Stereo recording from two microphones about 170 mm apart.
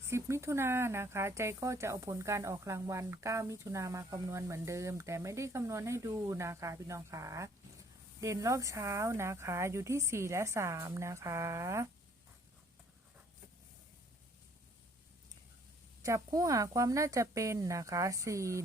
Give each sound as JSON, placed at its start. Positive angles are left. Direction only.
{"t": 0.1, "sound": "speech", "side_deg": -15}
{"t": 16.0, "sound": "speech", "side_deg": -20}